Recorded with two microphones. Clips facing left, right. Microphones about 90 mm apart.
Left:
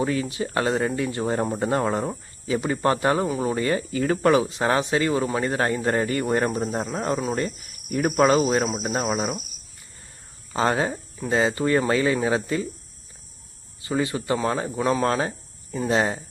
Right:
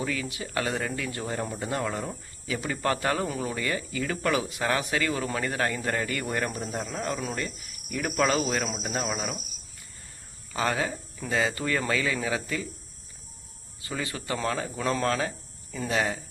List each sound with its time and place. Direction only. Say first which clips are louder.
0.0 s speech: left 7 dB; 30° left (ahead or behind)
10.5 s speech: left 5 dB; 30° left (ahead or behind)
13.8 s speech: left 9 dB; 20° left (ahead or behind)
15.9 s speech: left 5 dB; 30° left (ahead or behind)